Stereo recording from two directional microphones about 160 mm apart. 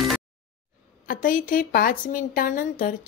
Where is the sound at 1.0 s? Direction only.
60° left (ahead or behind).